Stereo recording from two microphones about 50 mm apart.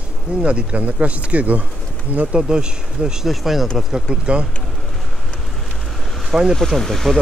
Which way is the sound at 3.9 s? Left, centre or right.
Right.